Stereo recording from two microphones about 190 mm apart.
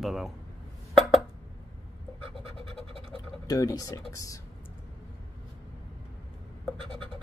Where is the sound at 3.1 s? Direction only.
20° left (ahead or behind).